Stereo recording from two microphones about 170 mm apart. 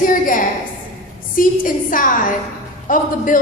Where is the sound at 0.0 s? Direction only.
55° left (ahead or behind).